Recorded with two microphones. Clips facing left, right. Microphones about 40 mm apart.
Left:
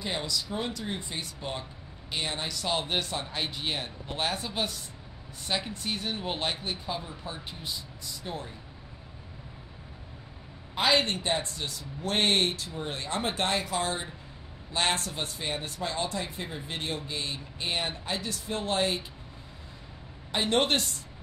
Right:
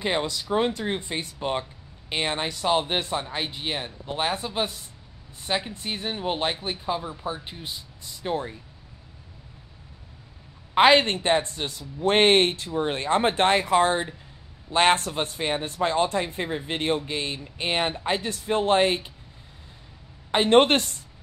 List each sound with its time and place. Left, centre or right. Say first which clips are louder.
0.0 s speech: right 6 dB; right; by 7.3 s centre
7.4 s speech: right 1 dB; right
8.2 s speech: right 10 dB; right
10.7 s a woman's voice: right 8 dB; right
20.2 s speech: right 8 dB; right